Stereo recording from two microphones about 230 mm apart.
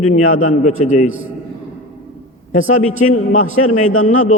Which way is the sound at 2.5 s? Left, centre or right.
Left.